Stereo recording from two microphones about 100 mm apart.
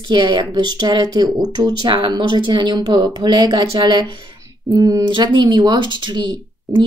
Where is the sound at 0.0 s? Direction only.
50° right (ahead or behind).